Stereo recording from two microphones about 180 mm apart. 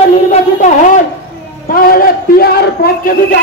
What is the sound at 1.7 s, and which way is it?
A man's voice, 50° left (ahead or behind).